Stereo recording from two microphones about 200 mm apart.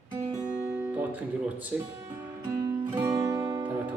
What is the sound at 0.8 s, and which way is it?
Guitar, 10° right (ahead or behind).